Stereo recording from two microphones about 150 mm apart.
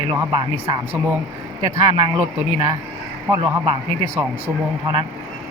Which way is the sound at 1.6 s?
25° right (ahead or behind).